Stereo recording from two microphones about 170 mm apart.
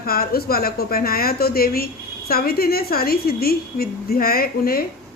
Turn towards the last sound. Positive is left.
turn(degrees=60)  # may be behind; listen again after turning